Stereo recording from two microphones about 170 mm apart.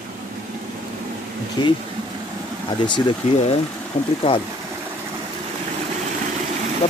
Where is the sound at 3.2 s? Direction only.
40° left (ahead or behind).